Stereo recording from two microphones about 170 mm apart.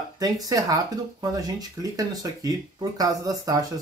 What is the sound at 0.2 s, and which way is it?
Speech, 20° right (ahead or behind).